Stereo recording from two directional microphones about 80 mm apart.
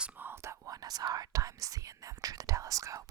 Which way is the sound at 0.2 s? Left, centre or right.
Right.